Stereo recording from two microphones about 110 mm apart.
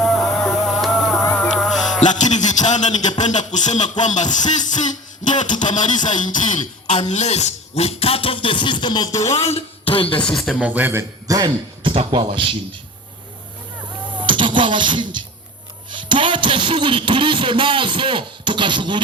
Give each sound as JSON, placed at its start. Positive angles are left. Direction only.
{"t": 0.0, "sound": "music", "side_deg": 5}
{"t": 2.0, "sound": "a man's voice", "side_deg": 90}
{"t": 9.2, "sound": "speech", "side_deg": 80}
{"t": 10.6, "sound": "a man's voice", "side_deg": -15}
{"t": 11.3, "sound": "a man's voice", "side_deg": -40}
{"t": 14.2, "sound": "music", "side_deg": -50}
{"t": 15.9, "sound": "a man's voice", "side_deg": -45}